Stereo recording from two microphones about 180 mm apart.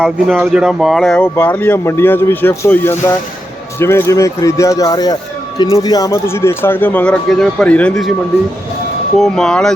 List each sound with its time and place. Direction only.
0.0 s speech: centre (ahead or behind)
1.1 s speech: 10° left (ahead or behind)
9.1 s speech: centre (ahead or behind)